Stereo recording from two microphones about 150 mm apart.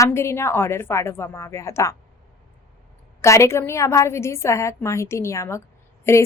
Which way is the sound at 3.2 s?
20° left (ahead or behind).